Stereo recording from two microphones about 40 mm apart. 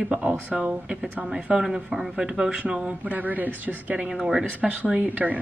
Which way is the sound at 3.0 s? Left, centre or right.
Right.